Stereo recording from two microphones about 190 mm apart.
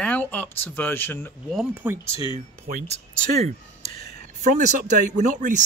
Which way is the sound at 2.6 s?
35° right (ahead or behind).